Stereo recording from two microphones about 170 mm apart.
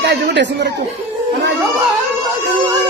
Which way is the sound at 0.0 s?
90° right.